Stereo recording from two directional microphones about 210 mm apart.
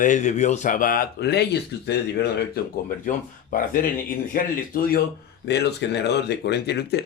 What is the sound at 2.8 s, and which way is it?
Speech, 40° left (ahead or behind).